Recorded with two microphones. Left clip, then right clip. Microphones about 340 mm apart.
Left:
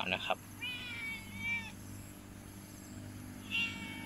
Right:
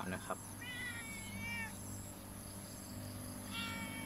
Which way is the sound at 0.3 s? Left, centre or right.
Centre.